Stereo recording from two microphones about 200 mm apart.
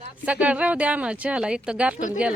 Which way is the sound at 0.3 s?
5° right (ahead or behind).